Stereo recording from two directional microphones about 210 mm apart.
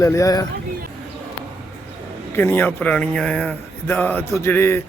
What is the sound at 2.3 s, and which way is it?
Speech, 10° left (ahead or behind).